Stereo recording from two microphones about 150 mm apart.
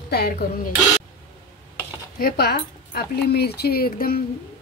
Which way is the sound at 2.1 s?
90° left.